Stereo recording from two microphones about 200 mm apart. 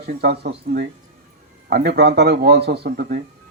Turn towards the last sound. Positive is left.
turn(degrees=-55)  # may be behind; listen again after turning